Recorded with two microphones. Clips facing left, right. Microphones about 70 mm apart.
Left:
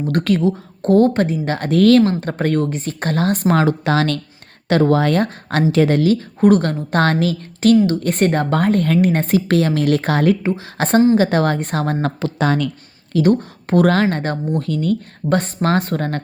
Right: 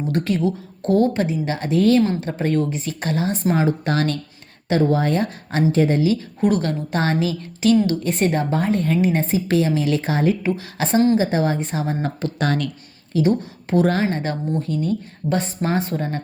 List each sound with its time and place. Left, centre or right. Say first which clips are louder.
0.1 s a woman's voice: left 5 dB; left
0.4 s a woman's voice: left 4 dB; left
6.1 s a woman's voice: left 6 dB; left
7.0 s a woman's voice: left 4 dB; left
10.4 s a woman's voice: left 2 dB; left
10.8 s a woman's voice: left 4 dB; left
11.2 s a woman's voice: left 4 dB; left
13.4 s speech: left 3 dB; left
13.8 s speech: left 4 dB; left
14.2 s a woman's voice: left 3 dB; left
14.6 s speech: left 3 dB; left
15.3 s a woman's voice: left 4 dB; left